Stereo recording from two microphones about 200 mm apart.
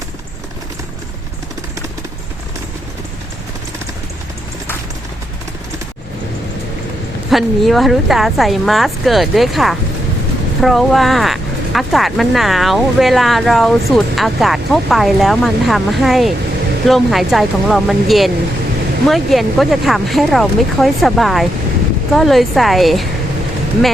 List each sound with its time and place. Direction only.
7.3 s speech: centre (ahead or behind)